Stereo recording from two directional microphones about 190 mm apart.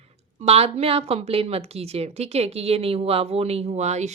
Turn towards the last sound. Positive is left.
turn(degrees=-35)  # may be behind; listen again after turning